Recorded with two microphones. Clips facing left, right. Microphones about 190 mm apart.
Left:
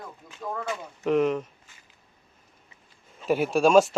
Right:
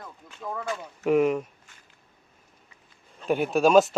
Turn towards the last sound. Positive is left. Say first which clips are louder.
# even
turn(degrees=0)  # may be behind; listen again after turning